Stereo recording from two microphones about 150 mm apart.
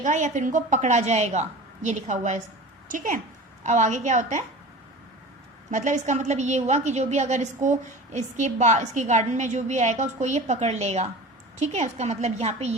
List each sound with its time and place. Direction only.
0.0 s a woman's voice: 55° right (ahead or behind)
2.9 s a woman's voice: 60° right (ahead or behind)
5.7 s a woman's voice: 55° right (ahead or behind)